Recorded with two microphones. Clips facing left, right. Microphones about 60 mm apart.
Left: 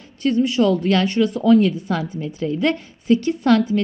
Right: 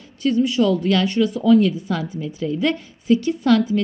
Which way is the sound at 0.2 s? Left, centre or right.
Left.